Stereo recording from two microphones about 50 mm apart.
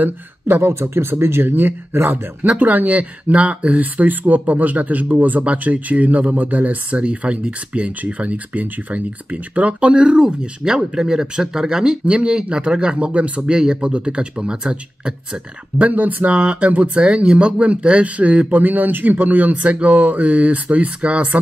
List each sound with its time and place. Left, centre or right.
0.6 s speech: right
15.9 s speech: right